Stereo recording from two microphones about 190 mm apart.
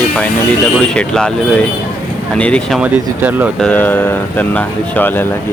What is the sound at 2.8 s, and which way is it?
Speech, 10° right (ahead or behind).